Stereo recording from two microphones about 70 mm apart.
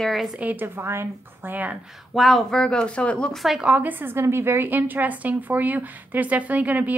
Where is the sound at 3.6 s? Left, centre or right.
Right.